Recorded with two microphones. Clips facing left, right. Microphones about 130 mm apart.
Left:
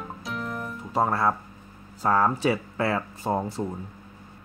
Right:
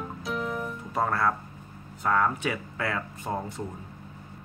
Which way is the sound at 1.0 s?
25° left (ahead or behind).